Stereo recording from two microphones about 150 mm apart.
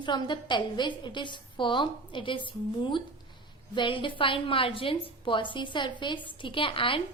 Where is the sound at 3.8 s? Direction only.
35° left (ahead or behind).